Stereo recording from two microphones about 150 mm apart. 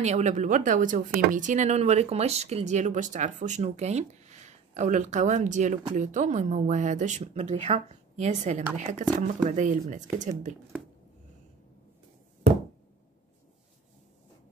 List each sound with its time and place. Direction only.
0.0 s speech: 50° right (ahead or behind)